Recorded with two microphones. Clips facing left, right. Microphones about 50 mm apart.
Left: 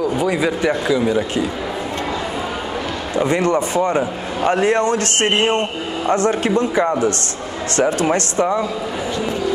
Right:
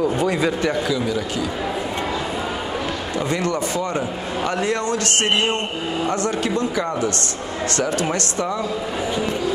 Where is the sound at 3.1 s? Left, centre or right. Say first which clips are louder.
Left 7 dB; left.